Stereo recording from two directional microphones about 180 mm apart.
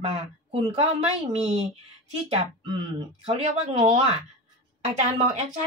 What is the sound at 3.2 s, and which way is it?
Speech, 35° right (ahead or behind).